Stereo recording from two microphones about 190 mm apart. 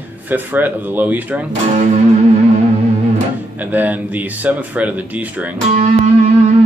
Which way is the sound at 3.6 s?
10° right (ahead or behind).